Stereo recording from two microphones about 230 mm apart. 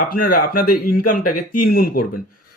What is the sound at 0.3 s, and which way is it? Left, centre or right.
Speech, left.